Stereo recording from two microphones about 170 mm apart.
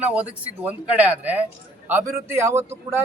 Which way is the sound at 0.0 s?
10° right (ahead or behind).